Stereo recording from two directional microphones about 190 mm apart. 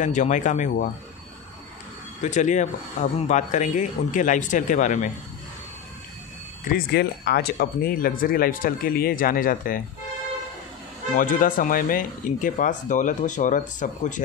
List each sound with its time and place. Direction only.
0.0 s speech: 40° left (ahead or behind)
2.2 s speech: 40° left (ahead or behind)
6.6 s speech: 55° left (ahead or behind)
11.1 s speech: 45° left (ahead or behind)